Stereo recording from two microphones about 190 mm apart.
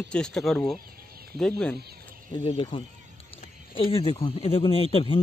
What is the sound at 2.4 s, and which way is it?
Speech, 30° left (ahead or behind).